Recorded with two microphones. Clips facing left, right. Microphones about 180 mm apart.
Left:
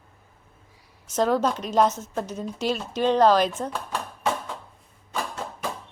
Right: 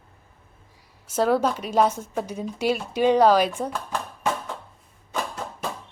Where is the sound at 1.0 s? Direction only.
10° right (ahead or behind).